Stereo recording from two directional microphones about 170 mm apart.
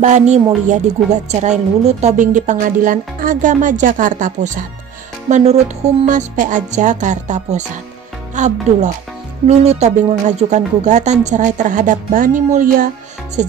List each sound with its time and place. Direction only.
0.0 s speech: 45° right (ahead or behind)
5.3 s music: 40° right (ahead or behind)
6.0 s speech: 50° right (ahead or behind)